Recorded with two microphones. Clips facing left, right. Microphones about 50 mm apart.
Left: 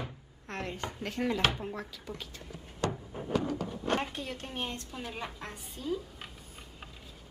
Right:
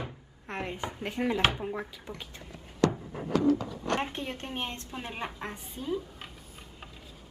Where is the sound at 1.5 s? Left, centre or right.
Centre.